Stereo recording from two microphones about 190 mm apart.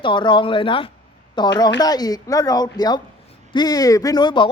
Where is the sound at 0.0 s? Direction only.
25° left (ahead or behind).